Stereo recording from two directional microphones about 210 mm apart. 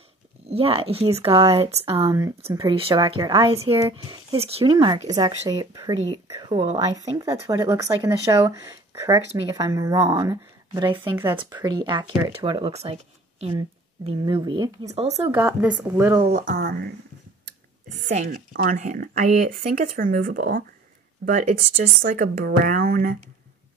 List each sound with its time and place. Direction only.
0.5 s speech: 25° right (ahead or behind)
15.3 s speech: 10° right (ahead or behind)
16.3 s speech: 40° right (ahead or behind)
18.0 s speech: 35° right (ahead or behind)